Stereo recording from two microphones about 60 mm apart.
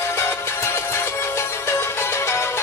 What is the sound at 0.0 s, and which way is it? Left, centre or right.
Music, left.